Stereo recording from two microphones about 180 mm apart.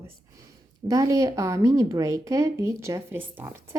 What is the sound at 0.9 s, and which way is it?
A woman's voice, 20° right (ahead or behind).